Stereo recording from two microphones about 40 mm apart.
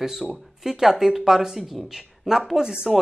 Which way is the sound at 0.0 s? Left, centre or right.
Centre.